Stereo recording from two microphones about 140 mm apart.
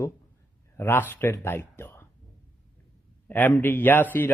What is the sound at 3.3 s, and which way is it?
A man's voice, 15° left (ahead or behind).